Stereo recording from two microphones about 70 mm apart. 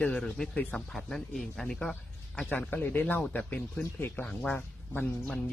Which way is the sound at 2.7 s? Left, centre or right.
Left.